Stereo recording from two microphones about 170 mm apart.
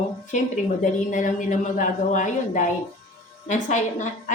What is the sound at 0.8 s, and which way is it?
A woman's voice, 50° left (ahead or behind).